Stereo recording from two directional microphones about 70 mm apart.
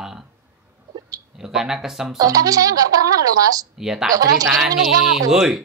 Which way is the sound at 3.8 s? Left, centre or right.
Centre.